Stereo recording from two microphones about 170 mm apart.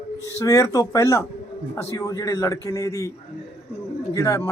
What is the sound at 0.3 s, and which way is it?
A man's voice, 20° left (ahead or behind).